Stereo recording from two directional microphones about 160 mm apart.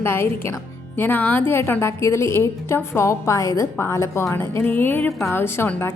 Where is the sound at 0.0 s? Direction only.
15° left (ahead or behind).